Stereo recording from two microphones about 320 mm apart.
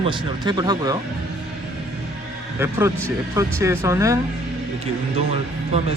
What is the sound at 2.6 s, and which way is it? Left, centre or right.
Speech, centre.